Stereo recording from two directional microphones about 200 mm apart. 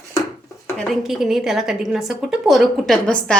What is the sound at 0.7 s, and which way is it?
A woman's voice, 5° left (ahead or behind).